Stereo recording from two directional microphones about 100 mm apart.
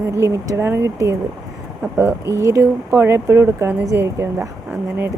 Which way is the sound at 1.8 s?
25° right (ahead or behind).